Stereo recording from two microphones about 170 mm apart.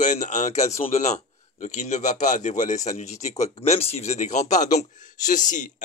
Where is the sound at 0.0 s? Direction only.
45° left (ahead or behind).